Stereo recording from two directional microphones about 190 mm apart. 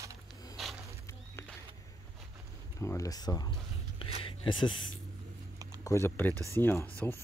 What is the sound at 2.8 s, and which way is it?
Speech, 15° left (ahead or behind).